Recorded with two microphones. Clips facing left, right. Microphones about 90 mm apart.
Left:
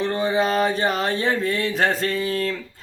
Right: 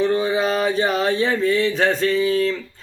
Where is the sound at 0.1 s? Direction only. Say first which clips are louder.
Right 1 dB; 40° left (ahead or behind).